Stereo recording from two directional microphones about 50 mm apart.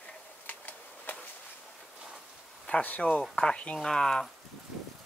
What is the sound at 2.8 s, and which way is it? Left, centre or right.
Speech, left.